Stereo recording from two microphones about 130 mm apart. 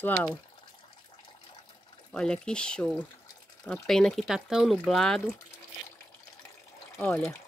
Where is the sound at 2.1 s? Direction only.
5° left (ahead or behind).